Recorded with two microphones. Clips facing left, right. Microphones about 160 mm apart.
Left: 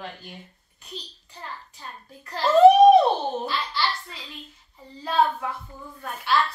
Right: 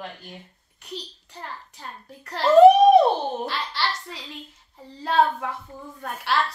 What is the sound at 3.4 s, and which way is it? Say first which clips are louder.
A child's voice: even; 75° right (ahead or behind).